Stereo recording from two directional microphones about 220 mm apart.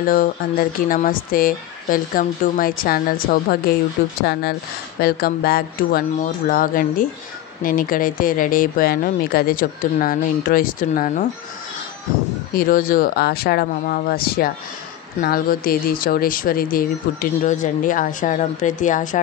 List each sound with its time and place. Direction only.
0.1 s speech: 40° left (ahead or behind)
12.5 s speech: 40° left (ahead or behind)